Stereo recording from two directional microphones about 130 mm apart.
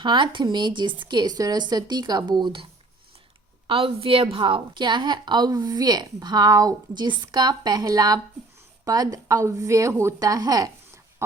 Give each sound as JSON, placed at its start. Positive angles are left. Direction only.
{"t": 0.0, "sound": "a woman's voice", "side_deg": -35}
{"t": 3.7, "sound": "a woman's voice", "side_deg": -45}